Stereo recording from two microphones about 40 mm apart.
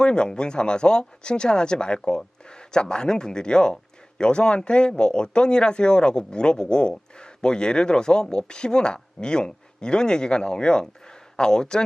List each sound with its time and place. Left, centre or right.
0.0 s speech: left